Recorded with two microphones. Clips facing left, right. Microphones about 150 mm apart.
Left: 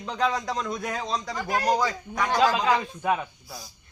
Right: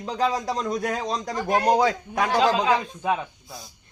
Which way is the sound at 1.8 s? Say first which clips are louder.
Right 5 dB; 60° right (ahead or behind).